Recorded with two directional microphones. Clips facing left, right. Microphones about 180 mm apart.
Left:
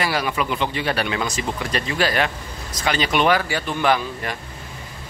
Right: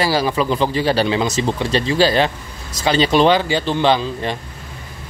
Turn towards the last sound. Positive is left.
turn(degrees=-25)  # may be behind; listen again after turning